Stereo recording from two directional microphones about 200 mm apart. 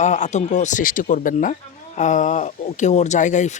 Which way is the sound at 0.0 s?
35° left (ahead or behind).